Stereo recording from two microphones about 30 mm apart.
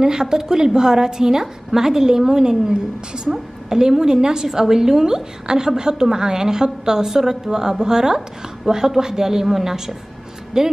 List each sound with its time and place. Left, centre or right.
0.0 s a woman's voice: right